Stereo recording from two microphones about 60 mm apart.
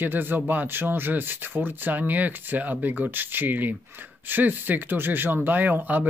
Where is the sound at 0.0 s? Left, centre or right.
Right.